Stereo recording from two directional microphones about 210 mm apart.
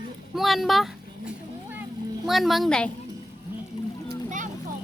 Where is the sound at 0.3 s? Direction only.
Centre (ahead or behind).